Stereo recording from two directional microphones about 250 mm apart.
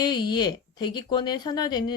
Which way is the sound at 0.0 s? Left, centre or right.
Centre.